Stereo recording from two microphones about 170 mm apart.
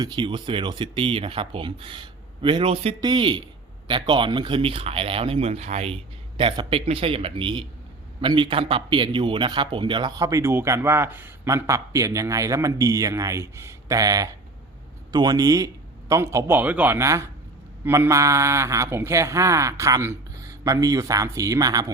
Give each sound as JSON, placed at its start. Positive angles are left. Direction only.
{"t": 0.0, "sound": "a man's voice", "side_deg": -30}